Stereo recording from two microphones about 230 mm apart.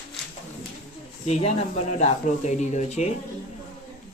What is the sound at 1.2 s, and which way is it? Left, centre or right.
Speech, left.